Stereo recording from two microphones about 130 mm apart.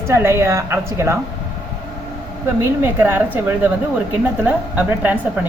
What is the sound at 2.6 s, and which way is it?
A woman's voice, 15° right (ahead or behind).